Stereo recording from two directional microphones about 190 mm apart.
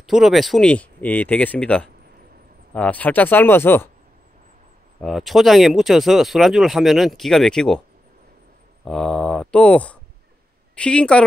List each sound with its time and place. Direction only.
0.0 s speech: centre (ahead or behind)
5.0 s speech: centre (ahead or behind)
8.8 s speech: 5° left (ahead or behind)